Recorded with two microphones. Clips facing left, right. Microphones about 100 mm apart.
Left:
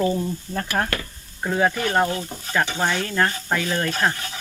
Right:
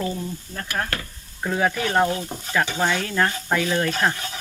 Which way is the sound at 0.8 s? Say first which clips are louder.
Left 3 dB; 40° left (ahead or behind).